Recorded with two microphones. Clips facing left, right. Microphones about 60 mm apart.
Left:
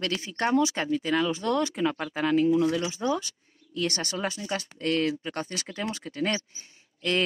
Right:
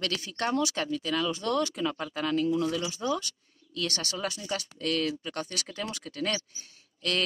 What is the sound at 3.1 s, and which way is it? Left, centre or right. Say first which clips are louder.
Speech: left 2 dB; left.